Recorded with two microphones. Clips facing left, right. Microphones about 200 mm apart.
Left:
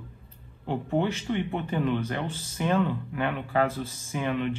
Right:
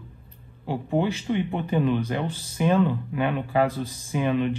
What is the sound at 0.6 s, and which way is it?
Speech, 15° right (ahead or behind).